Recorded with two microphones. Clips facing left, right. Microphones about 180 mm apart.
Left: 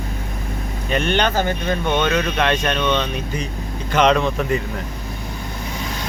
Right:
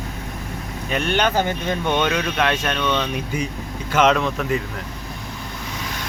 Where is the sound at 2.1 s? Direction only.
Centre (ahead or behind).